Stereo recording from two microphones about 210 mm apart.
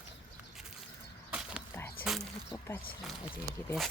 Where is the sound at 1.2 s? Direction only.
5° right (ahead or behind).